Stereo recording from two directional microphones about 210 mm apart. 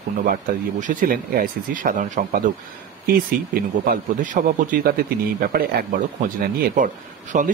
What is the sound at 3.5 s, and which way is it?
A man's voice, 45° right (ahead or behind).